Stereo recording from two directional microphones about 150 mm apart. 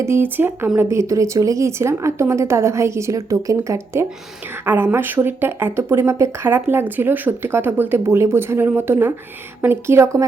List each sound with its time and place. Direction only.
0.0 s speech: 15° right (ahead or behind)